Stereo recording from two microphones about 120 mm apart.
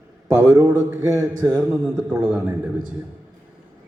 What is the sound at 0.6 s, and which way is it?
A man's voice, 15° right (ahead or behind).